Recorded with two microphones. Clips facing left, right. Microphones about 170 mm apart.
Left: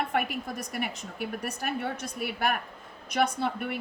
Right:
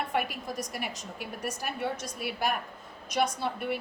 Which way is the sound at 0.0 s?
55° left (ahead or behind).